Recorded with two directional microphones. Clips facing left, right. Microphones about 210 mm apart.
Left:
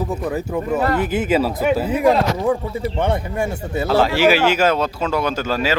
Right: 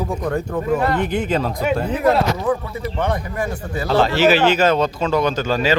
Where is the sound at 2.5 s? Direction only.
25° left (ahead or behind).